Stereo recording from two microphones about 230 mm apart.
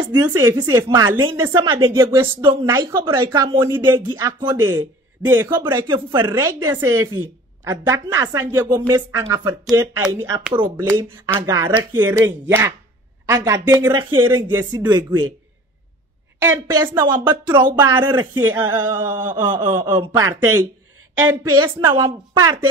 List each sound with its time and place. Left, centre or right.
0.4 s a woman's voice: centre
5.5 s a woman's voice: centre
16.3 s a woman's voice: centre